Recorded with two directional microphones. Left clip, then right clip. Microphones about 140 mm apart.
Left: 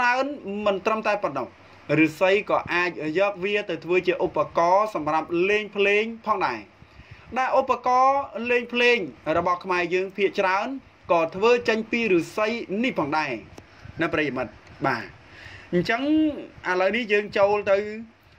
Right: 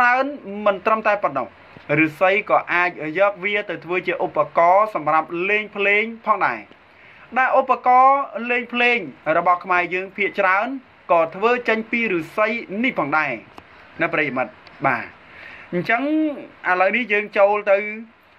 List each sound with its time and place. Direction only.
0.0 s a man's voice: 55° left (ahead or behind)
4.1 s speech: 30° left (ahead or behind)
4.4 s a man's voice: 55° left (ahead or behind)
4.9 s speech: 40° left (ahead or behind)
5.4 s a man's voice: 60° left (ahead or behind)
13.9 s a man's voice: 50° left (ahead or behind)